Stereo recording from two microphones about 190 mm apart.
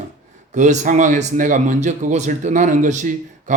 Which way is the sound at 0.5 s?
40° right (ahead or behind).